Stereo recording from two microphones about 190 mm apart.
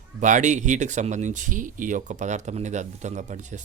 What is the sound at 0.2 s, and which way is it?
Speech, 40° right (ahead or behind).